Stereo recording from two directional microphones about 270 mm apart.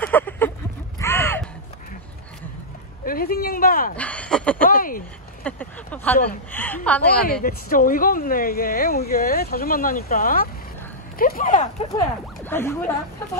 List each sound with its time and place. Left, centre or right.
0.0 s a sound: centre
3.1 s speech: left
3.9 s speech: centre
4.6 s speech: left
5.4 s a sound: centre
6.5 s a woman's voice: centre
7.4 s speech: left
12.4 s speech: centre